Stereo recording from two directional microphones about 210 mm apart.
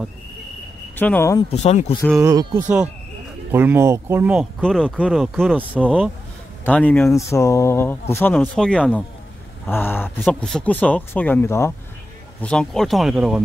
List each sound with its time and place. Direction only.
0.9 s speech: 10° left (ahead or behind)
1.5 s speech: 30° left (ahead or behind)
2.1 s speech: 15° right (ahead or behind)